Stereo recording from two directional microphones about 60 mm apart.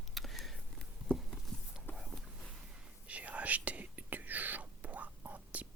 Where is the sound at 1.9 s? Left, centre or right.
Centre.